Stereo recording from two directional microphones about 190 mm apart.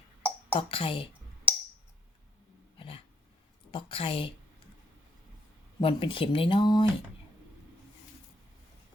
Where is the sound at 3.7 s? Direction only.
25° left (ahead or behind).